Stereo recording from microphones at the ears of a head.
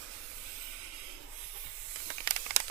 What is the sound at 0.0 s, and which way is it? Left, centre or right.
Steam, right.